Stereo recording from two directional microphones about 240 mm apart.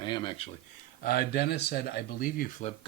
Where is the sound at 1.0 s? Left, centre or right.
Left.